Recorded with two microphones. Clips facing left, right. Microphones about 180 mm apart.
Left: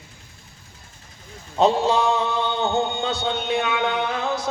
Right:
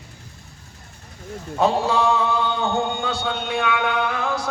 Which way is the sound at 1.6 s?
20° left (ahead or behind).